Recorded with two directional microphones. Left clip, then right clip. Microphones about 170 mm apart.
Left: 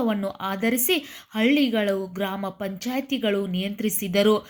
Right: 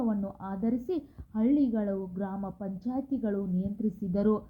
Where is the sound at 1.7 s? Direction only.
35° left (ahead or behind).